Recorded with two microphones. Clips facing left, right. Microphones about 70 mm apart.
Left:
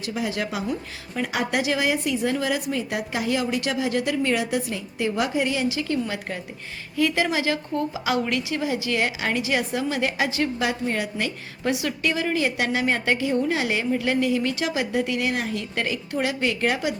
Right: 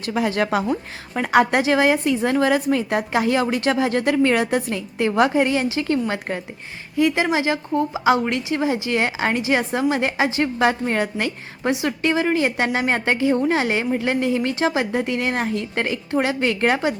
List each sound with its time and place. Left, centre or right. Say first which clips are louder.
0.0 s a woman's voice: right 6 dB; right
6.9 s a woman's voice: right 4 dB; right
10.6 s a woman's voice: right 6 dB; right
11.7 s a woman's voice: right 4 dB; right